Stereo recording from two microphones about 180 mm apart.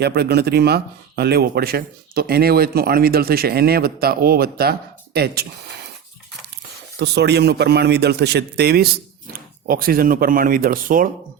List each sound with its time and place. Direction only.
0.0 s speech: 65° right (ahead or behind)
7.0 s speech: 65° right (ahead or behind); by 11.1 s 50° right (ahead or behind)